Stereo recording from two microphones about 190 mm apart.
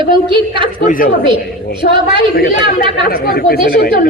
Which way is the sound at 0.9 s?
45° left (ahead or behind).